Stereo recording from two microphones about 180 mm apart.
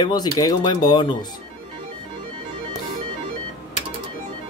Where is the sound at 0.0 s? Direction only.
20° left (ahead or behind).